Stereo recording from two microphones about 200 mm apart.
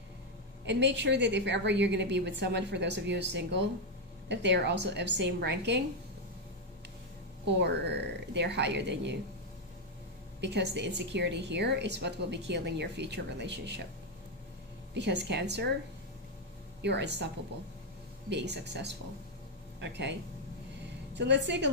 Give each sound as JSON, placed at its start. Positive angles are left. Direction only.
{"t": 0.7, "sound": "a woman's voice", "side_deg": -60}
{"t": 7.4, "sound": "a woman's voice", "side_deg": -60}
{"t": 10.4, "sound": "a woman's voice", "side_deg": -60}
{"t": 15.0, "sound": "a woman's voice", "side_deg": -60}
{"t": 16.8, "sound": "a woman's voice", "side_deg": -60}
{"t": 18.3, "sound": "a woman's voice", "side_deg": -60}